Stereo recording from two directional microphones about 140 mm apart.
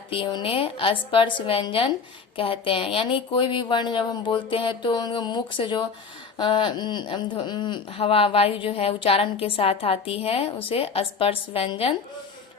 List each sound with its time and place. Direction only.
0.1 s speech: 35° left (ahead or behind)